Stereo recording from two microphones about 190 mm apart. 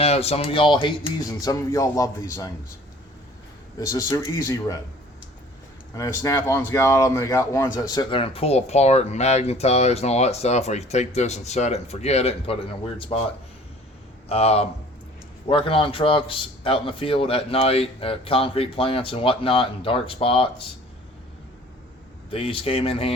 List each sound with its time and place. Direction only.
0.0 s a man's voice: 30° left (ahead or behind)
3.8 s speech: 20° left (ahead or behind)
5.9 s speech: 15° left (ahead or behind)
14.3 s a man's voice: 35° left (ahead or behind)
22.3 s a man's voice: 30° left (ahead or behind)